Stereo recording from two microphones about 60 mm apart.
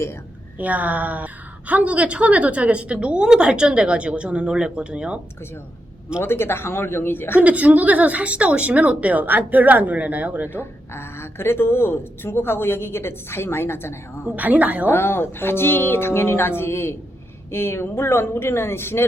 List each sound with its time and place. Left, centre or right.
0.6 s a woman's voice: right
6.2 s speech: left
7.3 s a woman's voice: right
10.5 s speech: left
14.3 s a woman's voice: right
14.8 s speech: left